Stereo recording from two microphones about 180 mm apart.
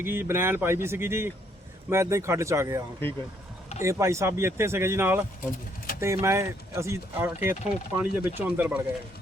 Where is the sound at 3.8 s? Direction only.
15° right (ahead or behind).